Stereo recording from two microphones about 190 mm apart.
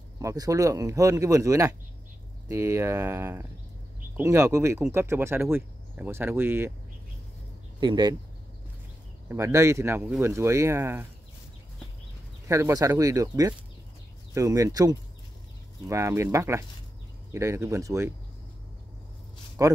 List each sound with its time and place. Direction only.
0.2 s speech: 15° right (ahead or behind)
7.8 s speech: 25° right (ahead or behind)
9.3 s speech: 15° right (ahead or behind)
12.4 s speech: 15° right (ahead or behind)
19.6 s speech: 15° right (ahead or behind)